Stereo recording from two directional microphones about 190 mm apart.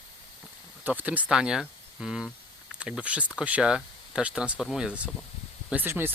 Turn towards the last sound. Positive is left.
turn(degrees=-10)  # may be behind; listen again after turning